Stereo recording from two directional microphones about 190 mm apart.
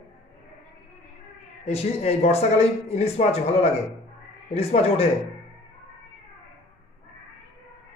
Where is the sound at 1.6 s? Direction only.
35° left (ahead or behind).